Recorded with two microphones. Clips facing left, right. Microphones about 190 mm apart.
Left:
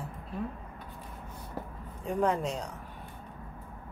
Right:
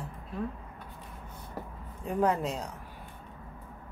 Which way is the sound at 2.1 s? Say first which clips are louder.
Right 1 dB; 5° right (ahead or behind).